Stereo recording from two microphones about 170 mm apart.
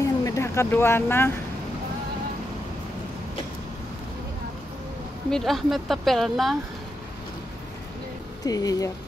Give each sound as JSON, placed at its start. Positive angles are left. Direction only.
{"t": 0.0, "sound": "a sound", "side_deg": 20}
{"t": 5.3, "sound": "speech", "side_deg": 0}
{"t": 8.5, "sound": "speech", "side_deg": 20}